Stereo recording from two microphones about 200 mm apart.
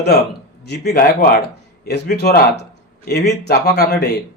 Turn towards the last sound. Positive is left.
turn(degrees=55)  # may be behind; listen again after turning